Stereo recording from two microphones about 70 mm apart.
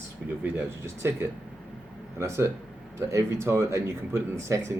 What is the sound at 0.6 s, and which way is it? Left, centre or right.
Speech, right.